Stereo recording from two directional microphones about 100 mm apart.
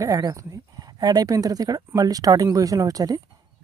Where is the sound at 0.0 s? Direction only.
35° right (ahead or behind).